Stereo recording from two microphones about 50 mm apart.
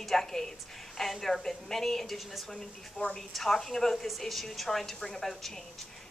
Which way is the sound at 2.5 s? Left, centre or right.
Centre.